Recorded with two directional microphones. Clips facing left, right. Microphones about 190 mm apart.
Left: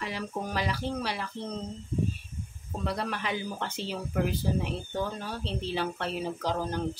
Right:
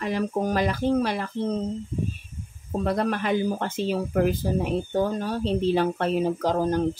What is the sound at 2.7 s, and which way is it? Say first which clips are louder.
Speech: right 8 dB; 50° right (ahead or behind).